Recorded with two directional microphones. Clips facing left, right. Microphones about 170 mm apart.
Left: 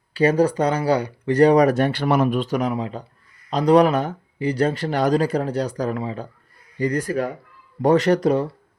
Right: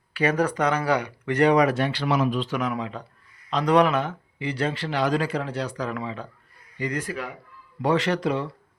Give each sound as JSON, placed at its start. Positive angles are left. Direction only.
{"t": 0.1, "sound": "speech", "side_deg": 30}
{"t": 2.5, "sound": "speech", "side_deg": 35}